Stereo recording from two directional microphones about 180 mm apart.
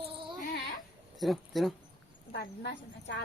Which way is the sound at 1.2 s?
Centre (ahead or behind).